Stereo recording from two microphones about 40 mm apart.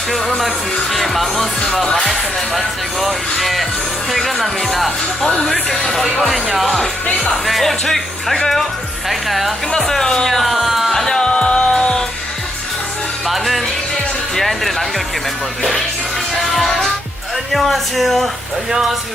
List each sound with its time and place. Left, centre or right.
0.4 s speech: centre
1.7 s speech: centre
3.0 s speech: centre
10.2 s speech: centre
10.9 s music: centre
13.2 s music: centre
14.3 s speech: centre
16.4 s music: centre
17.5 s speech: centre